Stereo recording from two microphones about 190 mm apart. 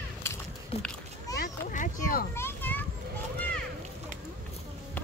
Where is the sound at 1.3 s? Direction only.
45° left (ahead or behind).